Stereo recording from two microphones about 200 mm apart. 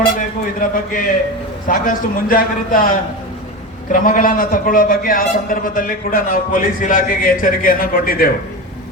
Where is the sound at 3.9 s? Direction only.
40° left (ahead or behind).